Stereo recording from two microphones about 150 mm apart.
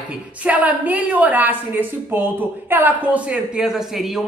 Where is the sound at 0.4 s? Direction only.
10° right (ahead or behind).